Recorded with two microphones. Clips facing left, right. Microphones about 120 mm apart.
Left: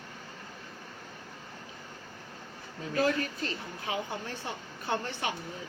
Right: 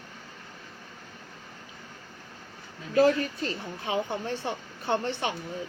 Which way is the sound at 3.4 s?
30° right (ahead or behind).